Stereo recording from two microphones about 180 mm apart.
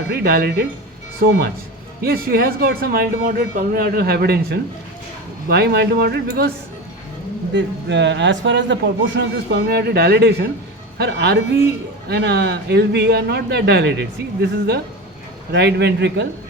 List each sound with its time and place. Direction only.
0.1 s speech: 60° right (ahead or behind)
2.0 s speech: 55° right (ahead or behind)
7.5 s a man's voice: 80° right